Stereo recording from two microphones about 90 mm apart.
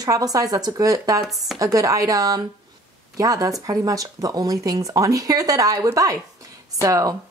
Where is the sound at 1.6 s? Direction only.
40° right (ahead or behind).